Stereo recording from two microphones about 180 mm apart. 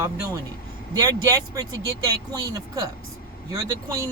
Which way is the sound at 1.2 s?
20° right (ahead or behind).